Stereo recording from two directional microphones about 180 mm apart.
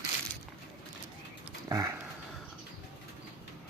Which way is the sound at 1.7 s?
20° right (ahead or behind).